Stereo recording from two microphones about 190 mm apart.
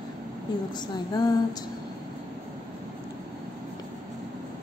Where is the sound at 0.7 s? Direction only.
20° left (ahead or behind).